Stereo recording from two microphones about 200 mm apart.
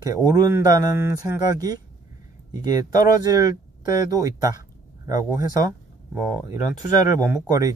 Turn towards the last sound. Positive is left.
turn(degrees=-15)  # may be behind; listen again after turning